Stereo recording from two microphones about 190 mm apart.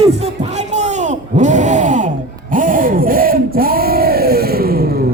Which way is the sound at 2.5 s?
45° right (ahead or behind).